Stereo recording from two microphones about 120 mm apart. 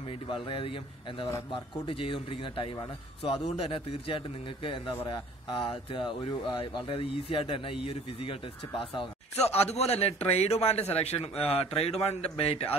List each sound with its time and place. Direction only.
0.3 s a man's voice: 45° left (ahead or behind)
9.4 s a man's voice: 60° left (ahead or behind)